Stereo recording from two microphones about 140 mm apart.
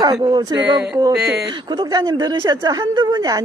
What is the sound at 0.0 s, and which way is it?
Speech, 30° right (ahead or behind).